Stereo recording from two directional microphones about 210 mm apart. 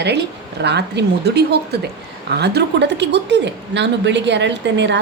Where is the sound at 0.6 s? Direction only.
55° right (ahead or behind).